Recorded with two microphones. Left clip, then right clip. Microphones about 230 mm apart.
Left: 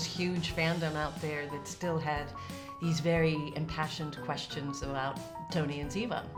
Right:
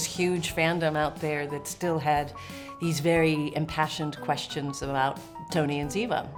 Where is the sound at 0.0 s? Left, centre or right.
Right.